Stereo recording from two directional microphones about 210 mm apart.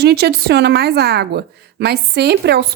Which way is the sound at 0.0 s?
50° right (ahead or behind).